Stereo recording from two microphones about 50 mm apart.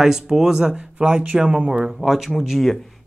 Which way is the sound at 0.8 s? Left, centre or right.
Right.